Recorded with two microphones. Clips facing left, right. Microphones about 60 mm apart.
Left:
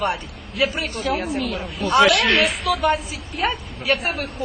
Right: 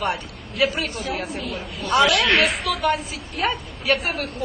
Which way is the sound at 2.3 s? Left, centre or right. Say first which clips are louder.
Left 1 dB; centre.